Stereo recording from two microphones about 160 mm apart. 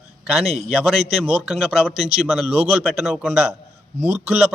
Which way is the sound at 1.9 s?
40° right (ahead or behind).